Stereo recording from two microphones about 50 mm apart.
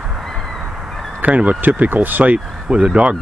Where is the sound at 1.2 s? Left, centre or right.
Right.